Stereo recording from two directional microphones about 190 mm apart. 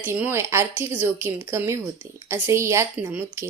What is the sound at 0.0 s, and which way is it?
Speech, 10° right (ahead or behind).